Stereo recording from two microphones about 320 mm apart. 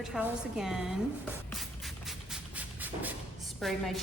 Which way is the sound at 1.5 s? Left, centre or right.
Centre.